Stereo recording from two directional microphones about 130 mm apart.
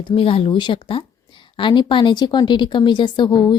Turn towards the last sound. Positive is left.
turn(degrees=35)  # may be behind; listen again after turning